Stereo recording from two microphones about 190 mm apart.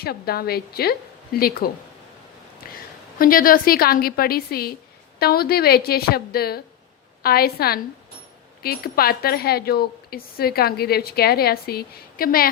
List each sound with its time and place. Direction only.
0.0 s speech: 55° left (ahead or behind)
2.6 s a sound: 50° left (ahead or behind)
3.2 s speech: 50° left (ahead or behind)